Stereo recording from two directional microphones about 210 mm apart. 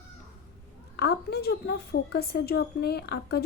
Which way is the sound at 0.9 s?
50° left (ahead or behind).